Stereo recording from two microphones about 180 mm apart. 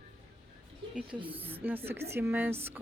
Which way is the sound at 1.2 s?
30° right (ahead or behind).